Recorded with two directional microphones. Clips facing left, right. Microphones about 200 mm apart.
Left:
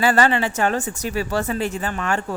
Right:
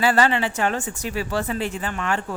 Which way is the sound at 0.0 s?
50° left (ahead or behind).